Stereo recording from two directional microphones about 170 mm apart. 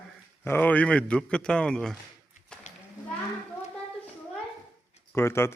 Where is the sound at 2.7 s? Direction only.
45° left (ahead or behind).